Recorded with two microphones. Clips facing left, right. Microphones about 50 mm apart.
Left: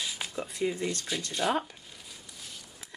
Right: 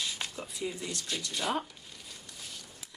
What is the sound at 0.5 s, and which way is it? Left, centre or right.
Speech, left.